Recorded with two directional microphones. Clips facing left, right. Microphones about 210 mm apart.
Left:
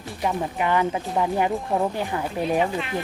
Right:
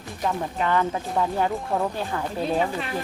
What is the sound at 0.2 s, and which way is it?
A woman's voice, 15° left (ahead or behind).